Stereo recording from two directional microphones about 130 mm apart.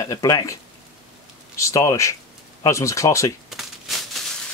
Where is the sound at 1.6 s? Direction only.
25° left (ahead or behind).